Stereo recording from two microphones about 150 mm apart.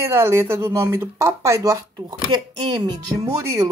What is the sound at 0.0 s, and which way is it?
Speech, 15° right (ahead or behind).